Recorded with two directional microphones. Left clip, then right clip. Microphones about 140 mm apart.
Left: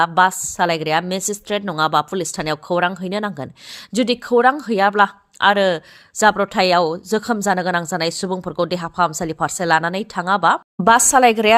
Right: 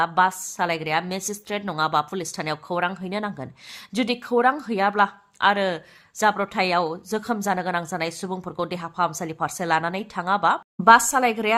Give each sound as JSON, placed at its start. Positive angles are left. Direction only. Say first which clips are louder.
{"t": 0.0, "sound": "speech", "louder": "left 5 dB", "side_deg": 35}
{"t": 10.8, "sound": "speech", "louder": "left 3 dB", "side_deg": 45}